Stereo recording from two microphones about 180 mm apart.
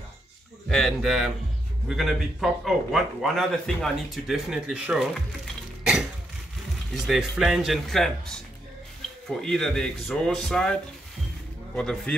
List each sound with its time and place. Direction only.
0.7 s speech: centre (ahead or behind)
6.9 s speech: centre (ahead or behind)